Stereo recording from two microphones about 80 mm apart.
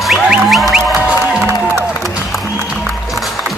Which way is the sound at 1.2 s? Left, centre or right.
Right.